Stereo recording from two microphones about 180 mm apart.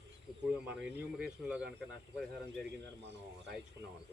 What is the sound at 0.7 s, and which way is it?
Speech, 10° right (ahead or behind).